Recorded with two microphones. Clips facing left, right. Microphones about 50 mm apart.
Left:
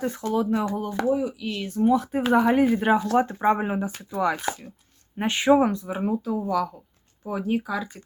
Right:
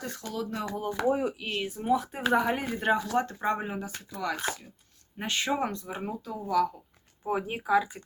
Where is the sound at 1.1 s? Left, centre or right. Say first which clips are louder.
Left 4 dB; right.